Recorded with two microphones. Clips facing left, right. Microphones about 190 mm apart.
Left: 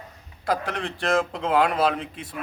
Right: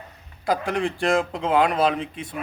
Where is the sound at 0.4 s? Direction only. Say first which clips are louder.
Right 3 dB; centre (ahead or behind).